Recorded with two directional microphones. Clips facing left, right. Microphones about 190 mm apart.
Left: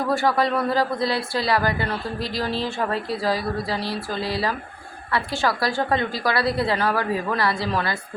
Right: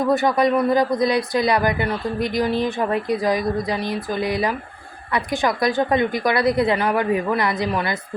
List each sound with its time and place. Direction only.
0.1 s a man's voice: 20° right (ahead or behind)